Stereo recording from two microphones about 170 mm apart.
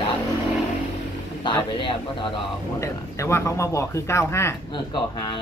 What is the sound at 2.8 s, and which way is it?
Speech, 15° left (ahead or behind).